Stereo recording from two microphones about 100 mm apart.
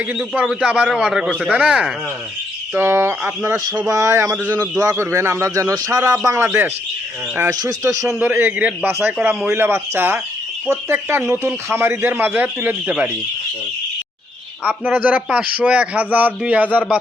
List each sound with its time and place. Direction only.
0.2 s a man's voice: 10° right (ahead or behind)
2.7 s speech: 25° right (ahead or behind)
4.4 s a man's voice: 20° right (ahead or behind)
7.6 s speech: 35° right (ahead or behind)
8.2 s a man's voice: 20° right (ahead or behind)
9.5 s speech: 20° right (ahead or behind)
14.6 s a man's voice: 15° right (ahead or behind)